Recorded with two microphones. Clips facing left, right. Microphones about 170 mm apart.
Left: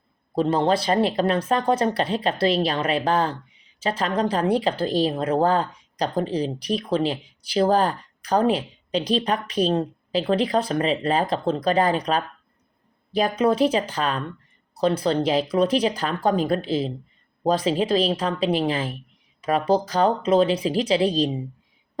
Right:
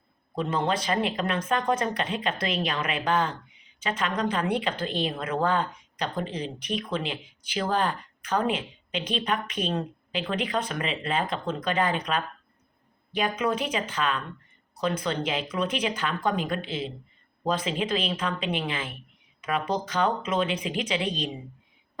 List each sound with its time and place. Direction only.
0.3 s speech: 35° left (ahead or behind)